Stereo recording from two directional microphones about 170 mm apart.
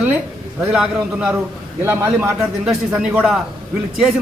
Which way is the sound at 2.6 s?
5° right (ahead or behind).